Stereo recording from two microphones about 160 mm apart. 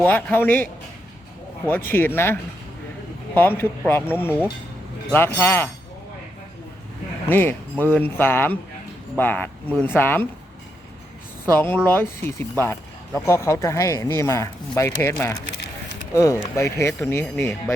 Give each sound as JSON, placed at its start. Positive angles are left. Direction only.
{"t": 0.0, "sound": "speech", "side_deg": 10}
{"t": 7.3, "sound": "speech", "side_deg": 10}
{"t": 11.5, "sound": "speech", "side_deg": 15}